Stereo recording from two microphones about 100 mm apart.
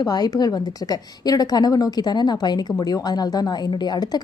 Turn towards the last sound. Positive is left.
turn(degrees=45)  # may be behind; listen again after turning